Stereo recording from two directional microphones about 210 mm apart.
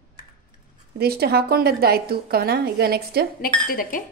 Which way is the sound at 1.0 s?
50° right (ahead or behind).